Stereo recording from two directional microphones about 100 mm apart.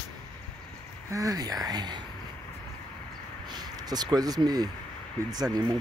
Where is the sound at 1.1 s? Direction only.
35° right (ahead or behind).